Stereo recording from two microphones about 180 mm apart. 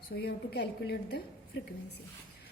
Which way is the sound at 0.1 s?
65° left (ahead or behind).